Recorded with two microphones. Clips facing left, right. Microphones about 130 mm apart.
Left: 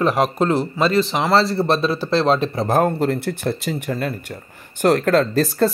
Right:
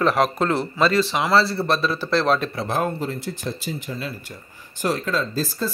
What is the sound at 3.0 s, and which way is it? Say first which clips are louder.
Speech: left 7 dB; 65° left (ahead or behind).